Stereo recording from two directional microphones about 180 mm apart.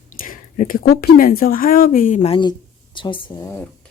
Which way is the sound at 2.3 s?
25° left (ahead or behind).